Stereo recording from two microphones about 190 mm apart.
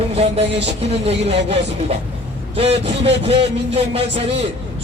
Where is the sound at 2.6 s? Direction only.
35° right (ahead or behind).